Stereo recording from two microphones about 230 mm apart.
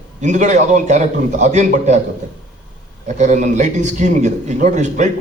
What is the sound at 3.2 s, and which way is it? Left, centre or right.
A man's voice, right.